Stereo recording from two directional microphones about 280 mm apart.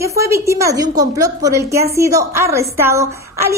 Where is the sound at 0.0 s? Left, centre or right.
Centre.